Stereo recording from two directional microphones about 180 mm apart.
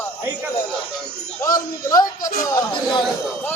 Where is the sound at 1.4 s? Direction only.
20° left (ahead or behind).